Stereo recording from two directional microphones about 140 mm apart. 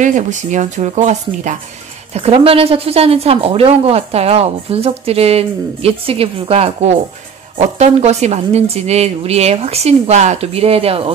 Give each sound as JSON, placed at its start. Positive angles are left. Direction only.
{"t": 0.0, "sound": "speech", "side_deg": -65}
{"t": 2.1, "sound": "a woman's voice", "side_deg": -45}